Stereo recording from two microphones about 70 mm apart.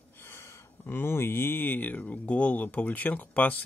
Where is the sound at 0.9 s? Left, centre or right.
Left.